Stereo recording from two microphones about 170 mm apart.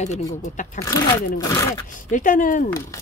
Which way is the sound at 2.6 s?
15° left (ahead or behind).